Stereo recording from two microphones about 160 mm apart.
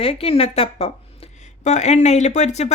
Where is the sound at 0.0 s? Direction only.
35° left (ahead or behind).